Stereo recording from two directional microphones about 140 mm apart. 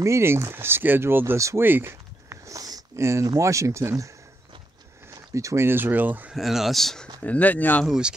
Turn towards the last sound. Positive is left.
turn(degrees=10)  # may be behind; listen again after turning